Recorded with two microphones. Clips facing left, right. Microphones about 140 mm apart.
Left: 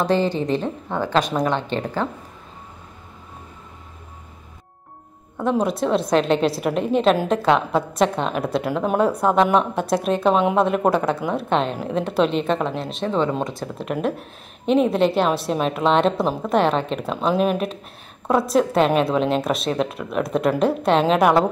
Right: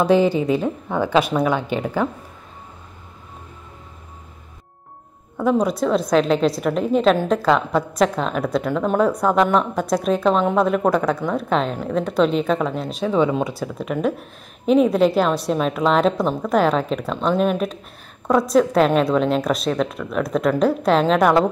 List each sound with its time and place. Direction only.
0.0 s a woman's voice: 10° right (ahead or behind)
5.4 s a woman's voice: centre (ahead or behind)